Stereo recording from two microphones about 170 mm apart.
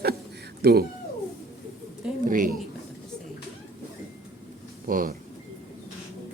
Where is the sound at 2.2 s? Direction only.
55° right (ahead or behind).